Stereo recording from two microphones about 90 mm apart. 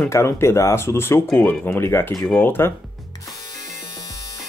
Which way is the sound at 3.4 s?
40° left (ahead or behind).